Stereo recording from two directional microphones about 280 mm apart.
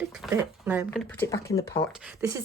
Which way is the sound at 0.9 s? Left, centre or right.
Centre.